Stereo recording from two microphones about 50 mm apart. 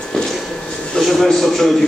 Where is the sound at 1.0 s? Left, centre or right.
Centre.